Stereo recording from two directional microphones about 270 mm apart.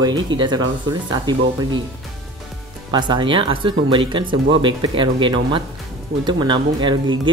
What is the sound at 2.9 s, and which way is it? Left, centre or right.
Speech, centre.